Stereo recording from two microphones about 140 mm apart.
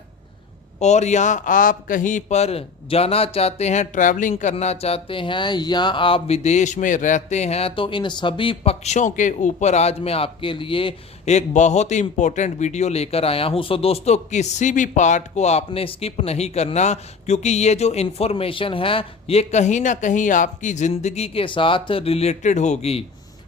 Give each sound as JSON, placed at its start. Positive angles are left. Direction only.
{"t": 0.8, "sound": "a man's voice", "side_deg": 55}
{"t": 4.5, "sound": "a man's voice", "side_deg": 45}
{"t": 11.3, "sound": "a man's voice", "side_deg": 55}